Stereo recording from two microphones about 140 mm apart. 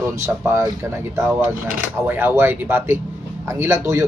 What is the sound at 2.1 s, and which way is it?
Speech, 15° right (ahead or behind).